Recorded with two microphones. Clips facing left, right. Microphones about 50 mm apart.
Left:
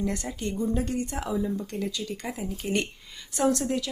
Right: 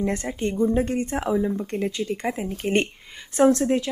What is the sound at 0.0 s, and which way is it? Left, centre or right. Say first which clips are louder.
Speech: right 5 dB; right.